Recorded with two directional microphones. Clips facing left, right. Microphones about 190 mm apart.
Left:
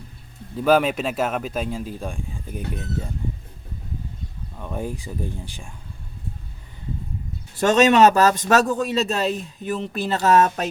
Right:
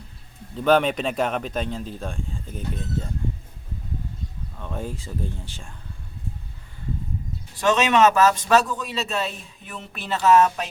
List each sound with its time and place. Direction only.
0.6 s speech: 5° left (ahead or behind)
4.5 s speech: 10° left (ahead or behind)
7.6 s speech: 40° left (ahead or behind)